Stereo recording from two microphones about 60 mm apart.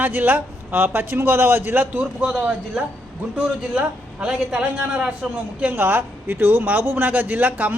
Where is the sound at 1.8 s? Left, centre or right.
Right.